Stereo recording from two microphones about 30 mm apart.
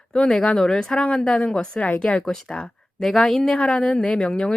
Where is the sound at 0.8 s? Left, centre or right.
Left.